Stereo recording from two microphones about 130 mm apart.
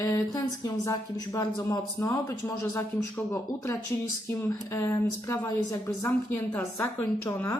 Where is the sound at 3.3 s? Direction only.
20° left (ahead or behind).